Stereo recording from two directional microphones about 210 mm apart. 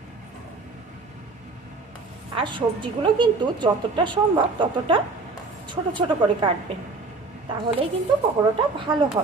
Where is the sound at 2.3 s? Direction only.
20° right (ahead or behind).